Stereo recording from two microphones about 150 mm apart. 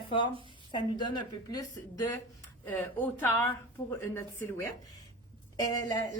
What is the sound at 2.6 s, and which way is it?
Speech, 15° left (ahead or behind).